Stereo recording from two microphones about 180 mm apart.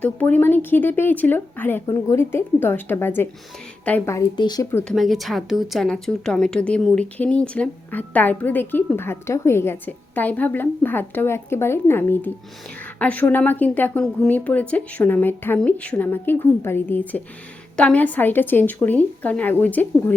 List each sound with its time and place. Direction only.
0.0 s a woman's voice: 10° left (ahead or behind)
4.9 s a woman's voice: centre (ahead or behind)